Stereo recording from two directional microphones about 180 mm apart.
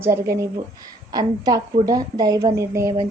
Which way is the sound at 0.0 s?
15° right (ahead or behind).